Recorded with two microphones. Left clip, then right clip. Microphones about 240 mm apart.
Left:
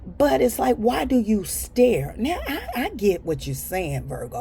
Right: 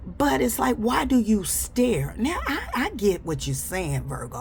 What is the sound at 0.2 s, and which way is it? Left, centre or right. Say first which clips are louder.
A woman's voice: left 4 dB; centre.